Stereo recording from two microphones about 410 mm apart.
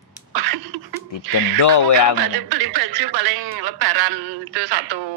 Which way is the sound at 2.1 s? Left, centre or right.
Right.